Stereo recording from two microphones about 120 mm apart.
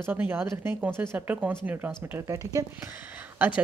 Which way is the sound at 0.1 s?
15° right (ahead or behind).